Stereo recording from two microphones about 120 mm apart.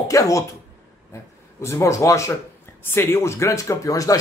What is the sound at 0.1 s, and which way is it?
Speech, 25° left (ahead or behind).